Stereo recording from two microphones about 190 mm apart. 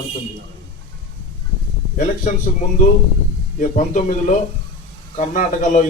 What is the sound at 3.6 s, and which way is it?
A man's voice, 40° left (ahead or behind).